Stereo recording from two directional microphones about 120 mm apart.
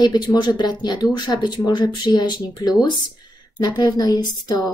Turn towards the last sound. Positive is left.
turn(degrees=35)  # may be behind; listen again after turning